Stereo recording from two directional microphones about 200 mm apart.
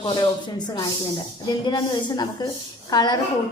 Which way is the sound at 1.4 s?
20° left (ahead or behind).